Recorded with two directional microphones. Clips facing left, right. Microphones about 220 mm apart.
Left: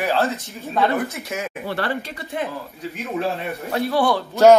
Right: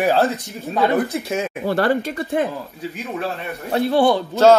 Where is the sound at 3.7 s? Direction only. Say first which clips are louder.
Right 4 dB; 25° right (ahead or behind).